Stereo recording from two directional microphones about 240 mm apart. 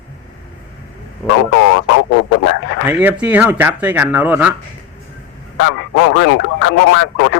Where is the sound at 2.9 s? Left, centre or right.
Centre.